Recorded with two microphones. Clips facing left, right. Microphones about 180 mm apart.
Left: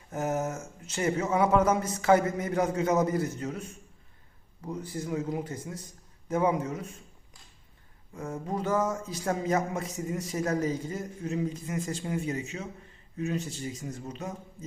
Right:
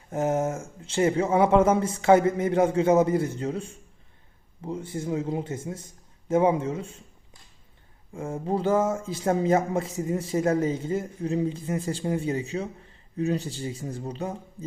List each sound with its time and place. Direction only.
0.1 s a man's voice: 25° right (ahead or behind)
8.1 s a man's voice: 30° right (ahead or behind)